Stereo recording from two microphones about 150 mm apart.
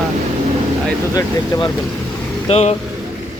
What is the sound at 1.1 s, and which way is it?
Speech, 25° left (ahead or behind).